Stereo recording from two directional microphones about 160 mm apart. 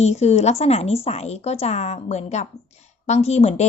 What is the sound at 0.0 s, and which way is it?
A woman's voice, 45° left (ahead or behind).